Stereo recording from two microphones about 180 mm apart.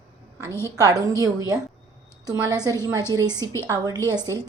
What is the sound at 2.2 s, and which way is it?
Speech, 20° right (ahead or behind).